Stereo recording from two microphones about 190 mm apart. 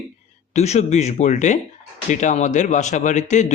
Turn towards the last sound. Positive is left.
turn(degrees=40)  # may be behind; listen again after turning